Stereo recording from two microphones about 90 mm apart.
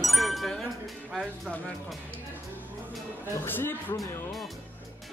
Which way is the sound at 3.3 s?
25° left (ahead or behind).